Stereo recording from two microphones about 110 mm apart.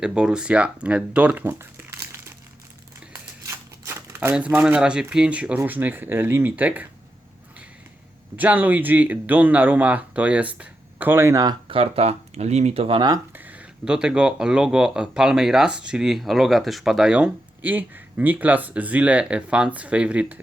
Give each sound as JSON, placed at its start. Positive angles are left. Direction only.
{"t": 0.0, "sound": "speech", "side_deg": -5}
{"t": 3.1, "sound": "crumpling", "side_deg": -25}
{"t": 4.4, "sound": "speech", "side_deg": -10}
{"t": 8.4, "sound": "speech", "side_deg": -15}
{"t": 11.7, "sound": "speech", "side_deg": -65}
{"t": 13.3, "sound": "speech", "side_deg": -15}